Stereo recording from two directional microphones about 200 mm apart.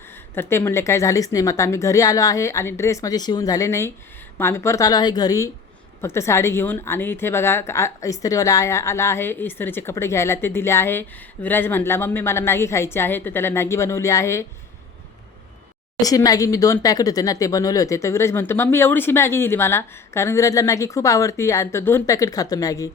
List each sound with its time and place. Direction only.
0.3 s speech: 10° left (ahead or behind)
16.0 s speech: 20° left (ahead or behind)